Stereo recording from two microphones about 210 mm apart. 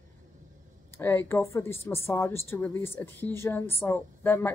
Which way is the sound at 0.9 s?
10° left (ahead or behind).